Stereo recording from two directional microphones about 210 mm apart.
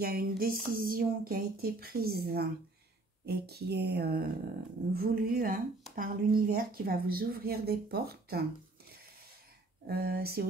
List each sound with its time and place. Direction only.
0.0 s a woman's voice: 45° right (ahead or behind)
9.8 s a woman's voice: 45° right (ahead or behind)